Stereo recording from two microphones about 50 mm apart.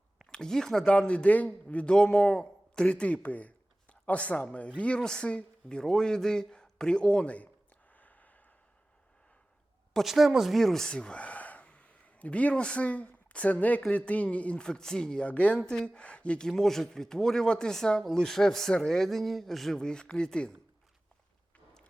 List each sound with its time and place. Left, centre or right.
0.3 s a man's voice: centre
4.9 s speech: centre
7.9 s a sound: left
10.0 s speech: centre
10.8 s a man's voice: centre
15.3 s a man's voice: left
16.5 s speech: centre
19.8 s speech: centre